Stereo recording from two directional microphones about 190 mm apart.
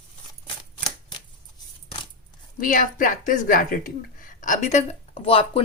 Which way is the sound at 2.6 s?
45° left (ahead or behind).